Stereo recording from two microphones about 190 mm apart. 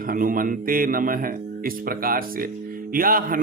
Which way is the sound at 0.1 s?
45° right (ahead or behind).